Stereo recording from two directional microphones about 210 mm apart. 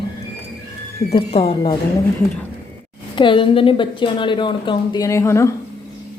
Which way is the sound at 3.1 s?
25° left (ahead or behind).